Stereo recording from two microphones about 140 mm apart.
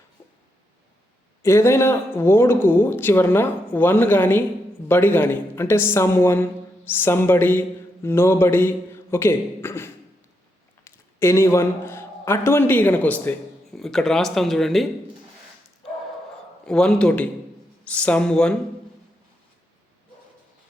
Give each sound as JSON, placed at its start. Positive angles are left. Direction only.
{"t": 1.4, "sound": "a man's voice", "side_deg": 20}
{"t": 16.6, "sound": "speech", "side_deg": 5}